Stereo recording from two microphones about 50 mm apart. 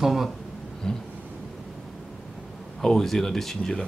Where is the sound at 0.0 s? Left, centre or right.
Centre.